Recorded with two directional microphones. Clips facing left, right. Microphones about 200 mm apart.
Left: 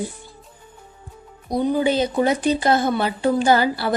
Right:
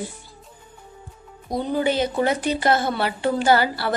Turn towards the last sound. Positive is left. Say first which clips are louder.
# left 1 dB
turn(degrees=20)  # may be behind; listen again after turning